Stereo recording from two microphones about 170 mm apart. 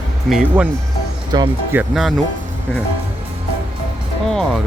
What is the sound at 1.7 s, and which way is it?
Speech, 5° right (ahead or behind).